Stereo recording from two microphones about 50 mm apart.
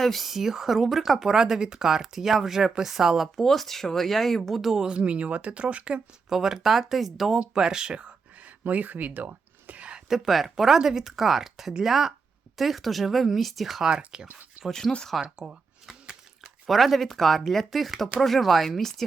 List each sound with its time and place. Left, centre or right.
0.0 s speech: centre
3.4 s speech: centre
4.9 s speech: right
6.2 s speech: centre
7.3 s speech: centre
8.6 s a sound: right
10.1 s speech: centre
13.8 s speech: centre
14.7 s speech: centre
15.2 s speech: centre
16.6 s speech: centre